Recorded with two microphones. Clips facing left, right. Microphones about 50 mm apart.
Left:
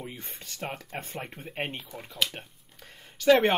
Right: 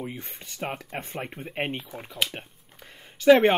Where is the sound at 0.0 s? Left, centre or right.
Centre.